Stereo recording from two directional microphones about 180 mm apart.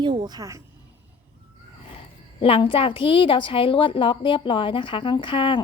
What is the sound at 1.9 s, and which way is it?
A woman's voice, 30° left (ahead or behind).